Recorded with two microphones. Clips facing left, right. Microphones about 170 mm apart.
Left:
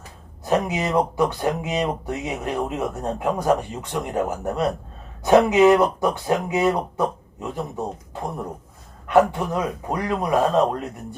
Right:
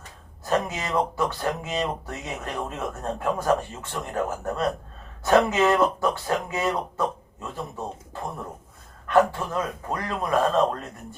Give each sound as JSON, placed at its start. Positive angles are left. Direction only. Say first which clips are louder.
{"t": 0.4, "sound": "speech", "louder": "left 4 dB", "side_deg": 15}